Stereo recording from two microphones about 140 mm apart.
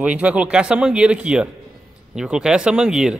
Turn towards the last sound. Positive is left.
turn(degrees=-5)  # may be behind; listen again after turning